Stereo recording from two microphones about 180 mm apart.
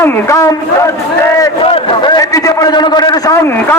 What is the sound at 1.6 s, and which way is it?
A man's voice, 30° left (ahead or behind).